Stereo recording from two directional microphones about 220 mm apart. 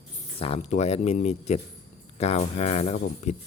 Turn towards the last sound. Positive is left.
turn(degrees=30)  # may be behind; listen again after turning